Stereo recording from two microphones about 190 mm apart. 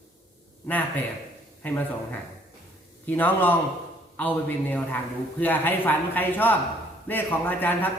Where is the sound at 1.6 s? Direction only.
10° left (ahead or behind).